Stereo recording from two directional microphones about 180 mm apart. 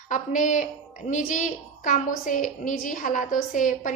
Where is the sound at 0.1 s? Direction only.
45° left (ahead or behind).